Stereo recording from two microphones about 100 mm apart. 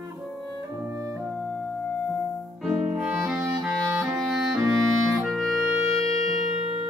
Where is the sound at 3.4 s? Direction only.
30° right (ahead or behind).